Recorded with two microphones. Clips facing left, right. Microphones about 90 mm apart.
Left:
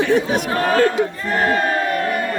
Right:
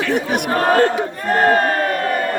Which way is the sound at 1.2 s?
45° right (ahead or behind).